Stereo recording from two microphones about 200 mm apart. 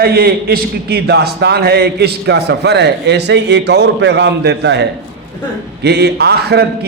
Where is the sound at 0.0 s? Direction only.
50° right (ahead or behind).